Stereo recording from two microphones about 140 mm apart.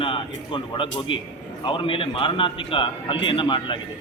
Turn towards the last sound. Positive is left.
turn(degrees=35)  # may be behind; listen again after turning